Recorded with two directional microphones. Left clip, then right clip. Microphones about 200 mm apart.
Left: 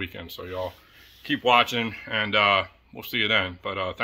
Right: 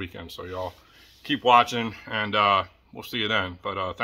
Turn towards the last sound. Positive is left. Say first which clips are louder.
# even
turn(degrees=5)  # may be behind; listen again after turning